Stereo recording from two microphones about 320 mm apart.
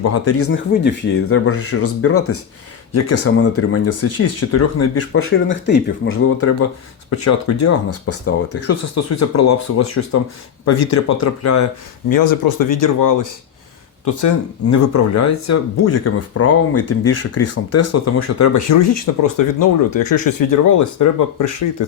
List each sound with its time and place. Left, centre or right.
0.0 s speech: left
0.7 s speech: left
5.5 s speech: left
7.2 s speech: left
14.0 s speech: left
19.2 s speech: left